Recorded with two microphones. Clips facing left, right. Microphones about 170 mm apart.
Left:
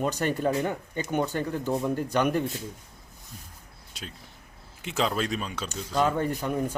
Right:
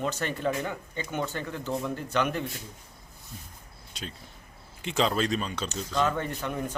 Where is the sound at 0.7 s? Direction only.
45° left (ahead or behind).